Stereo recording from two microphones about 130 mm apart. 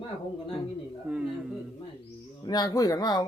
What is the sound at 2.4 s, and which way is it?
Speech, 30° left (ahead or behind).